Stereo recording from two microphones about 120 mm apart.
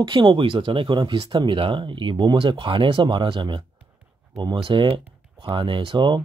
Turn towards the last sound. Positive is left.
turn(degrees=-40)  # may be behind; listen again after turning